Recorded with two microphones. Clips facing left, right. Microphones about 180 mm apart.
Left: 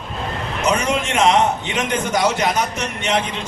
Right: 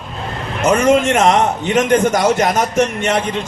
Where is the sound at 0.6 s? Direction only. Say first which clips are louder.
Right 8 dB; 50° right (ahead or behind).